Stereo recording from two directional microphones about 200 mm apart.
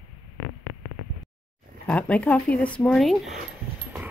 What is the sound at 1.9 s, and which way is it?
Speech, 5° left (ahead or behind).